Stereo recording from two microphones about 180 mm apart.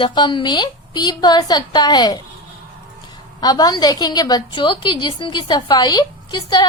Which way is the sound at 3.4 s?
20° left (ahead or behind).